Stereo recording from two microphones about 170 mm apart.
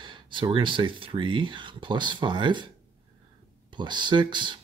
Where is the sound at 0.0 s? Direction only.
30° right (ahead or behind).